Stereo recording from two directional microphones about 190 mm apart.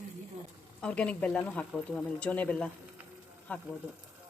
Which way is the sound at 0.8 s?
5° left (ahead or behind).